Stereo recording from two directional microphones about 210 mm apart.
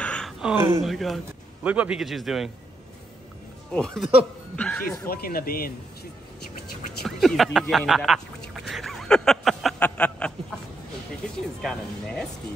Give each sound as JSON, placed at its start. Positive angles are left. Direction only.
{"t": 0.0, "sound": "speech", "side_deg": 5}
{"t": 3.7, "sound": "speech", "side_deg": 0}
{"t": 5.0, "sound": "speech", "side_deg": 45}
{"t": 7.0, "sound": "speech", "side_deg": 0}
{"t": 11.6, "sound": "speech", "side_deg": 0}